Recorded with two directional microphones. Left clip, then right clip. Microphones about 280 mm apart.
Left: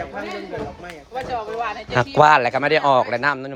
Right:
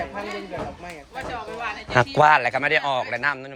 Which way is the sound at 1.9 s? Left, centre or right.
Centre.